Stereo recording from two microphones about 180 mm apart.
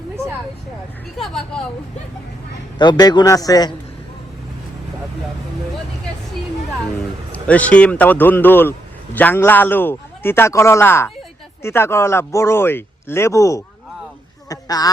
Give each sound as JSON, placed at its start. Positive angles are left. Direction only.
{"t": 1.2, "sound": "speech", "side_deg": 5}
{"t": 2.7, "sound": "a man's voice", "side_deg": 25}
{"t": 7.3, "sound": "a man's voice", "side_deg": 10}